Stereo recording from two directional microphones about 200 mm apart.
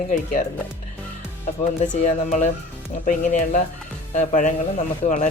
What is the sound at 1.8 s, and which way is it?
Speech, 35° left (ahead or behind).